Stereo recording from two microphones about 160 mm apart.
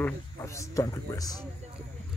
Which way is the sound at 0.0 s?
20° left (ahead or behind).